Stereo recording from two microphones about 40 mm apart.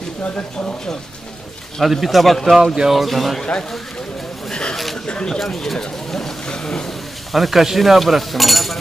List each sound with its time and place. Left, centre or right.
1.8 s speech: centre
2.5 s speech: centre
2.9 s speech: centre
4.5 s a sound: left
5.0 s speech: left
5.4 s speech: centre
7.3 s speech: centre